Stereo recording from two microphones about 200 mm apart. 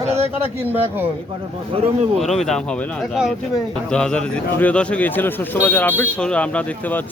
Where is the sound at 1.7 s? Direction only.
30° right (ahead or behind).